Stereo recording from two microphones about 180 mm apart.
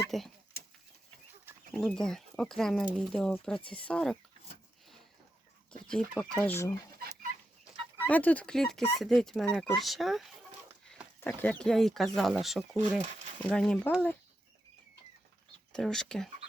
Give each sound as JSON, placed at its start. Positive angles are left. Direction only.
{"t": 0.1, "sound": "speech", "side_deg": 0}
{"t": 1.7, "sound": "speech", "side_deg": 0}
{"t": 5.9, "sound": "speech", "side_deg": 5}
{"t": 8.0, "sound": "speech", "side_deg": 10}
{"t": 11.2, "sound": "speech", "side_deg": 10}
{"t": 15.7, "sound": "speech", "side_deg": 5}